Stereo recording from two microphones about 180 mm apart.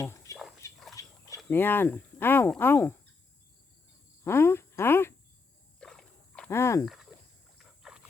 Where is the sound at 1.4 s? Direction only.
10° left (ahead or behind).